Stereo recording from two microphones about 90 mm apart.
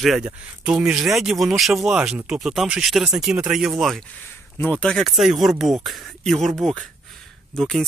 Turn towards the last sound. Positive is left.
turn(degrees=0)  # may be behind; listen again after turning